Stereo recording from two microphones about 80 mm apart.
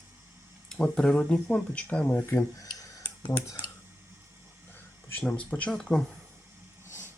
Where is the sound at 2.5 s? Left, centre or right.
Left.